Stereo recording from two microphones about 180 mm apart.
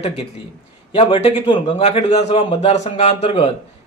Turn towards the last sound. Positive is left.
turn(degrees=30)  # may be behind; listen again after turning